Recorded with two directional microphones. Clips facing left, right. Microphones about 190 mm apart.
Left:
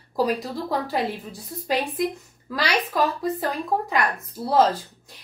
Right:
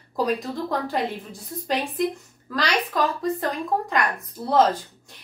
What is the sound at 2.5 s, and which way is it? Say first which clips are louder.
A woman's voice: left 1 dB; 10° left (ahead or behind).